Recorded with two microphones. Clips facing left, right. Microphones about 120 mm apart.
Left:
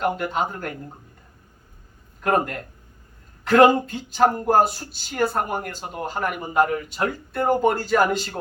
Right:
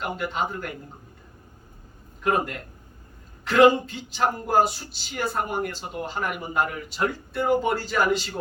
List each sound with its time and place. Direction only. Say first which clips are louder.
0.0 s speech: left 4 dB; 45° left (ahead or behind)
2.2 s speech: left 3 dB; 45° left (ahead or behind)
6.8 s speech: left 1 dB; centre (ahead or behind)
7.3 s speech: left 3 dB; 50° left (ahead or behind)